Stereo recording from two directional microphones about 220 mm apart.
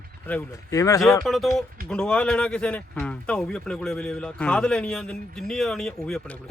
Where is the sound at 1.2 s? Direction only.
Centre (ahead or behind).